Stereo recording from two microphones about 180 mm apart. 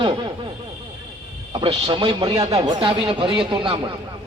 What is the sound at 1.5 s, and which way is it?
A man's voice, 30° right (ahead or behind).